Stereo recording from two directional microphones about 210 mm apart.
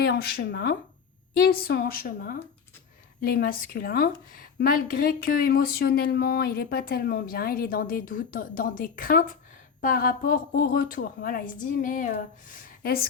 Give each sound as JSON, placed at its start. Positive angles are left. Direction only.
{"t": 0.0, "sound": "a woman's voice", "side_deg": 50}